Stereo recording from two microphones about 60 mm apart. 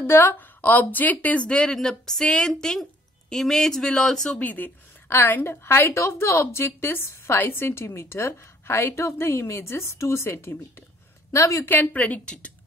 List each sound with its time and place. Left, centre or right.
0.0 s a woman's voice: left; by 4.4 s centre
4.4 s speech: left
5.1 s a woman's voice: left
5.9 s a woman's voice: left
11.3 s speech: left
11.6 s a woman's voice: left